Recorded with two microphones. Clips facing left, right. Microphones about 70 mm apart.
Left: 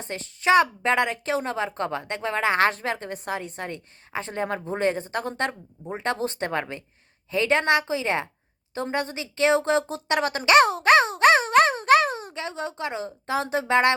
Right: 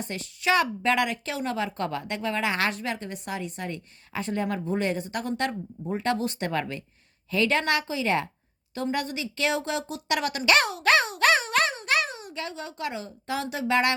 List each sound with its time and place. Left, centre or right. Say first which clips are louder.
0.0 s a woman's voice: left 3 dB; left